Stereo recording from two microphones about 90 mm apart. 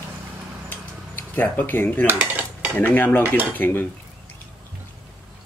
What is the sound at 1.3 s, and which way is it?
Speech, 20° left (ahead or behind).